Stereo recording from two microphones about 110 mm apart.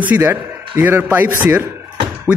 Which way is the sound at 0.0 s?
15° right (ahead or behind).